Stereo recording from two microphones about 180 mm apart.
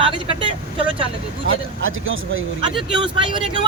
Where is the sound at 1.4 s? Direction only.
90° right.